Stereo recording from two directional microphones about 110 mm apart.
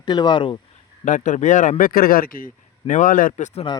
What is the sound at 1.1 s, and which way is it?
Speech, 90° left.